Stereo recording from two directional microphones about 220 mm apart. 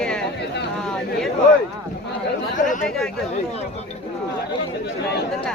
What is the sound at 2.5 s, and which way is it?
Speech, 35° left (ahead or behind).